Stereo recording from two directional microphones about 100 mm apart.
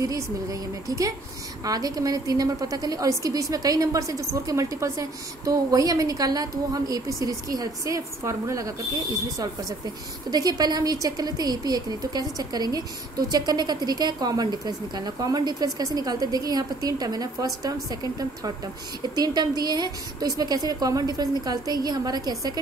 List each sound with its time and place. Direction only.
0.0 s a woman's voice: 35° right (ahead or behind)
10.3 s a woman's voice: 45° right (ahead or behind)
19.1 s a woman's voice: 40° right (ahead or behind)